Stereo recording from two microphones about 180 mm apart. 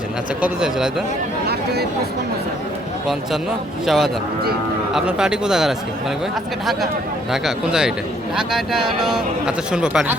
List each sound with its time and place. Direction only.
0.4 s speech: 5° right (ahead or behind)
1.5 s a sound: 65° right (ahead or behind)
3.8 s speech: centre (ahead or behind)
7.3 s speech: 5° right (ahead or behind)